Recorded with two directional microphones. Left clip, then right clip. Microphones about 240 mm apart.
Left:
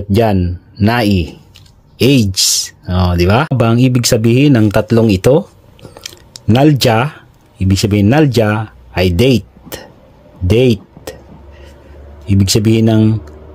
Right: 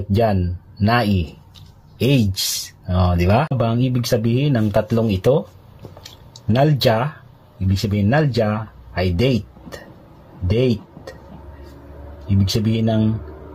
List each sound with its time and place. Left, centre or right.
0.1 s speech: left
10.4 s a sound: left
12.3 s speech: left